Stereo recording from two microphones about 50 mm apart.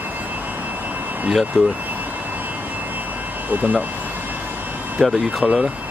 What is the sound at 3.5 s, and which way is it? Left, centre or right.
Speech, right.